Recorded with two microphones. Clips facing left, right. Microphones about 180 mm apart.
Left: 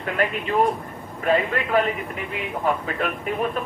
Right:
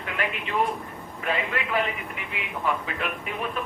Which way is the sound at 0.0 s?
45° left (ahead or behind).